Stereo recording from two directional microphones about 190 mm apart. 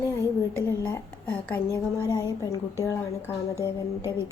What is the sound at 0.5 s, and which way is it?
A woman's voice, 10° left (ahead or behind).